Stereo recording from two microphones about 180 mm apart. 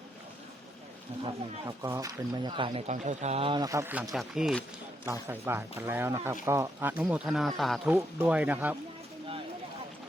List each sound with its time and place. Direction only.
1.2 s speech: 20° right (ahead or behind)
4.1 s speech: centre (ahead or behind)
5.3 s speech: 10° right (ahead or behind)